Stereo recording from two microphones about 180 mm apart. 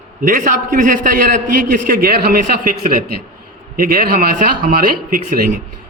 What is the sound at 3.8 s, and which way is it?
A man's voice, 50° right (ahead or behind).